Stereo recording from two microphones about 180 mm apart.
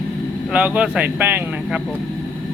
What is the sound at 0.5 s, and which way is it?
Speech, 5° right (ahead or behind).